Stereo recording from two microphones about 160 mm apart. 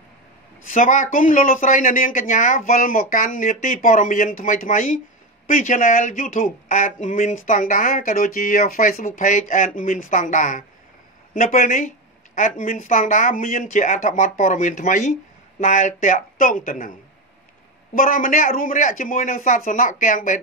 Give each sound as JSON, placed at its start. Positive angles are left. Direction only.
{"t": 0.7, "sound": "speech", "side_deg": 55}
{"t": 9.0, "sound": "speech", "side_deg": 50}
{"t": 17.9, "sound": "speech", "side_deg": 60}